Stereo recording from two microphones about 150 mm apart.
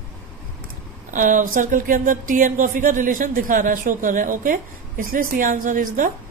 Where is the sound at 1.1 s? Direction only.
60° right (ahead or behind).